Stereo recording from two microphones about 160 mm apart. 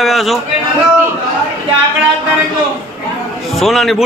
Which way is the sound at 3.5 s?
Centre (ahead or behind).